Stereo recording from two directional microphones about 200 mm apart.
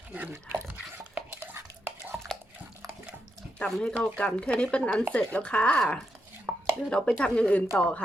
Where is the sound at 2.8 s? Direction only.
15° right (ahead or behind).